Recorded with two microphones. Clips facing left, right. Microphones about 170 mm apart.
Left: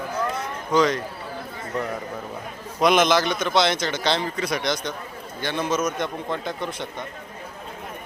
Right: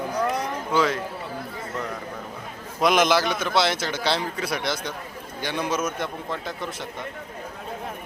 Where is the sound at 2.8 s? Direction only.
5° right (ahead or behind).